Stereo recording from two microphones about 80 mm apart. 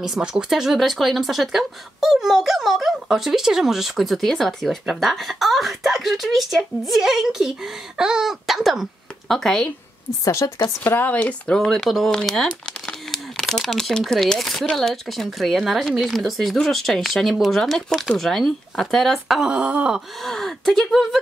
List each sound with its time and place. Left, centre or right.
0.0 s speech: centre
10.2 s a woman's voice: left
10.8 s speech: left; by 19.5 s centre
19.5 s groan: centre
20.2 s speech: centre